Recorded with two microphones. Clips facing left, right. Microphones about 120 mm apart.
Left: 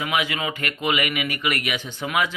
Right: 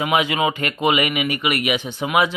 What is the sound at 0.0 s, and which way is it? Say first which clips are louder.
Speech: right 6 dB; 25° right (ahead or behind).